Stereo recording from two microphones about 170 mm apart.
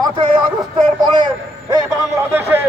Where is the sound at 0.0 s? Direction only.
30° right (ahead or behind).